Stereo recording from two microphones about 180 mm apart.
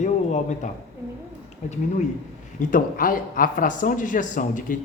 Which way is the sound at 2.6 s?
50° left (ahead or behind).